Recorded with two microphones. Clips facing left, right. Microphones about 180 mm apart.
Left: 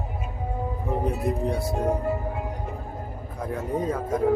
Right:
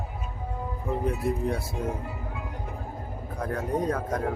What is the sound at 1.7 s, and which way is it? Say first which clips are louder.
Music: left 7 dB; 45° left (ahead or behind).